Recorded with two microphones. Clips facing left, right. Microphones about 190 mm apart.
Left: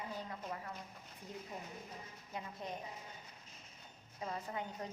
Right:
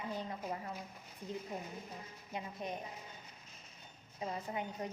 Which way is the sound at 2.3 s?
15° right (ahead or behind).